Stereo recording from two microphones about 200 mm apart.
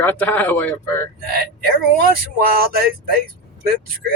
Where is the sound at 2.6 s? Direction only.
50° right (ahead or behind).